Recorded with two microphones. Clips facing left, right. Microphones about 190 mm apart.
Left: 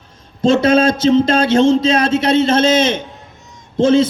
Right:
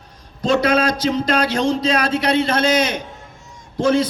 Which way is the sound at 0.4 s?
25° left (ahead or behind).